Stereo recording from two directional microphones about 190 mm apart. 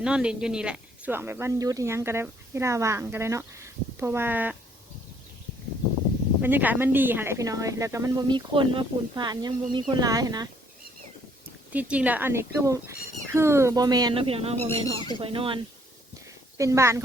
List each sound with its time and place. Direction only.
0.0 s speech: 5° right (ahead or behind)
6.4 s speech: 10° right (ahead or behind)
11.7 s speech: 5° right (ahead or behind); by 15.6 s 25° right (ahead or behind)
16.6 s speech: 15° right (ahead or behind)